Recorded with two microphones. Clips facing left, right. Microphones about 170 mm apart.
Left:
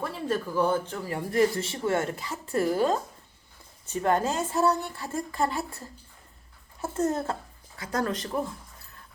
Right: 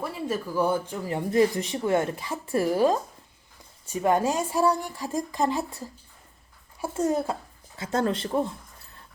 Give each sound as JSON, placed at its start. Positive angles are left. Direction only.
{"t": 0.0, "sound": "a woman's voice", "side_deg": -10}
{"t": 7.8, "sound": "speech", "side_deg": -25}